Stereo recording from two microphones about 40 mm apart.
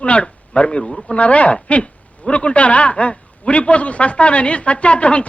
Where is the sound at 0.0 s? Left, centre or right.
Left.